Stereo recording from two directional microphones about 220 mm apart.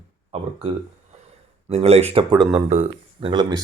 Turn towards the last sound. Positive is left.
turn(degrees=-20)  # may be behind; listen again after turning